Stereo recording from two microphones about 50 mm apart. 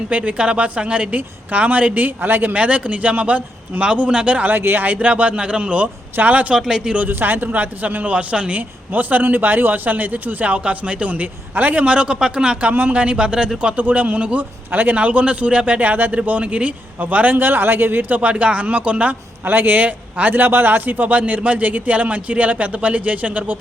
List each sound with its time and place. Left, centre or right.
0.1 s a woman's voice: right
4.4 s a man's voice: right
4.9 s a woman's voice: right
6.6 s speech: centre
7.1 s a man's voice: right; by 13.5 s centre
13.7 s a man's voice: right
17.3 s a man's voice: right
18.2 s a woman's voice: right
19.5 s a man's voice: right